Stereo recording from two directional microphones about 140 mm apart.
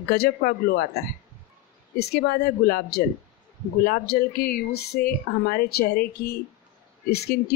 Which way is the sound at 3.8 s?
90° left.